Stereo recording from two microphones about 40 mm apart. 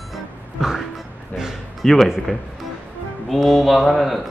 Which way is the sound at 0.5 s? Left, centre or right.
Centre.